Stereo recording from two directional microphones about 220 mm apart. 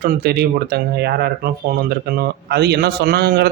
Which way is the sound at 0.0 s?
45° right (ahead or behind).